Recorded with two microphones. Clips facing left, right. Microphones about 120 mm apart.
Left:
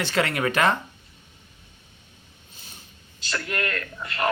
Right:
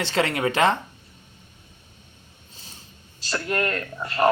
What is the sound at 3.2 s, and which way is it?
Speech, 35° right (ahead or behind).